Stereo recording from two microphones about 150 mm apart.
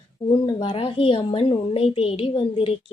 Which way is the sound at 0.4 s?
35° left (ahead or behind).